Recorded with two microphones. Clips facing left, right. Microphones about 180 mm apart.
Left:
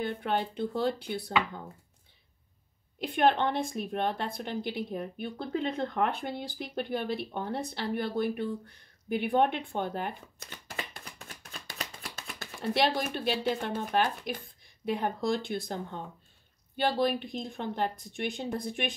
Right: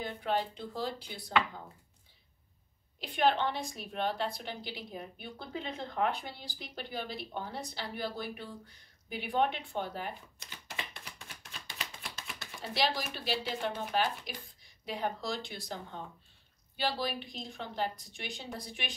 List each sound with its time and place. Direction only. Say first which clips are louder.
0.0 s speech: left 3 dB; 60° left (ahead or behind)
3.0 s a woman's voice: left 4 dB; 55° left (ahead or behind)
11.8 s a woman's voice: left 3 dB; 45° left (ahead or behind)